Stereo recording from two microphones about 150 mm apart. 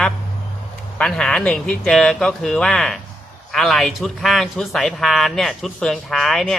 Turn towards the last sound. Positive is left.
turn(degrees=0)  # may be behind; listen again after turning